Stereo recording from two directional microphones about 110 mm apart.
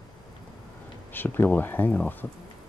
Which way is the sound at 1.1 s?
20° left (ahead or behind).